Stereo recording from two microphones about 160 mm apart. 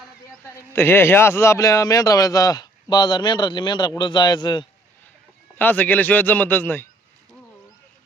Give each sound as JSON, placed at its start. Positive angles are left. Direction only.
{"t": 0.5, "sound": "a man's voice", "side_deg": 15}
{"t": 5.5, "sound": "speech", "side_deg": 10}